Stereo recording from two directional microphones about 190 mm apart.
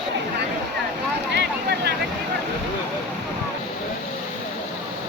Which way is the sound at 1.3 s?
60° right (ahead or behind).